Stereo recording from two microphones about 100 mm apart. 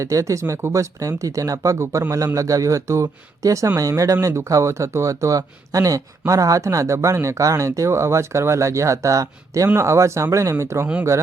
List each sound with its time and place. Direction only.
0.0 s speech: 30° right (ahead or behind)